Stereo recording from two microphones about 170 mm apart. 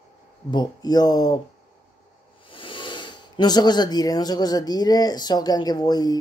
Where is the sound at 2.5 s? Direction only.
30° left (ahead or behind).